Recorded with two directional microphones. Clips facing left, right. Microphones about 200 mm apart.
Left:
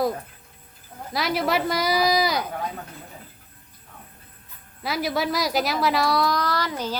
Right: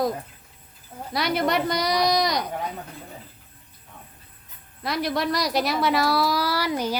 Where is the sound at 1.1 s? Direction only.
Centre (ahead or behind).